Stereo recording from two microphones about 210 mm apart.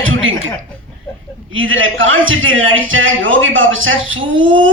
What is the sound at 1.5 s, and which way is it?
A woman's voice, 70° right (ahead or behind).